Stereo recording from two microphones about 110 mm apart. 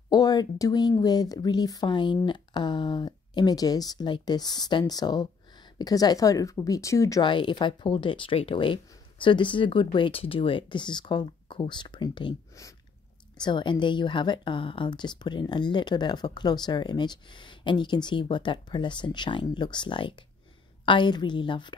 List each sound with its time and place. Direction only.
0.1 s speech: 35° left (ahead or behind)
7.2 s a woman's voice: 45° left (ahead or behind)
13.4 s a woman's voice: 45° left (ahead or behind)